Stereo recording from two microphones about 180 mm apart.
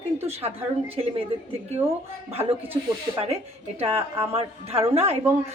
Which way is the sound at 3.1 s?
35° right (ahead or behind).